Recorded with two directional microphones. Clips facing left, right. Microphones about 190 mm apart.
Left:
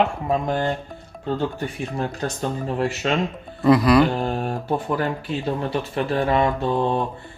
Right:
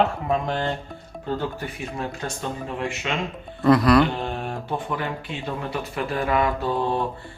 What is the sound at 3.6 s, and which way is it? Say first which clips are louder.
Speech: left 1 dB; centre (ahead or behind).